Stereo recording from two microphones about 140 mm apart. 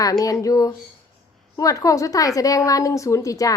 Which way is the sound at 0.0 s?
25° left (ahead or behind).